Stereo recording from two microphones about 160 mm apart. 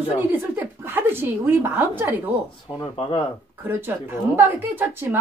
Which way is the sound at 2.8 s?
30° left (ahead or behind).